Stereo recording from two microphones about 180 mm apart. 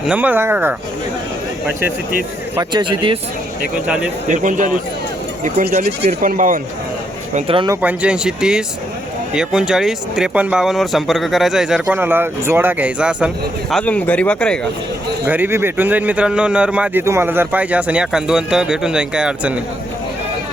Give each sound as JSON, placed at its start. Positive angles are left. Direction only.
{"t": 0.0, "sound": "a man's voice", "side_deg": -10}
{"t": 2.6, "sound": "speech", "side_deg": -25}
{"t": 3.8, "sound": "a man's voice", "side_deg": -5}
{"t": 4.4, "sound": "speech", "side_deg": -45}
{"t": 7.3, "sound": "speech", "side_deg": -30}
{"t": 7.7, "sound": "speech", "side_deg": -10}
{"t": 15.3, "sound": "a man's voice", "side_deg": -10}